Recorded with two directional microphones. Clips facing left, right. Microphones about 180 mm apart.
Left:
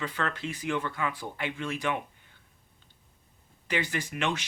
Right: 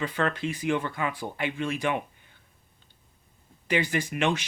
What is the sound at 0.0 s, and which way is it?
Speech, 20° right (ahead or behind).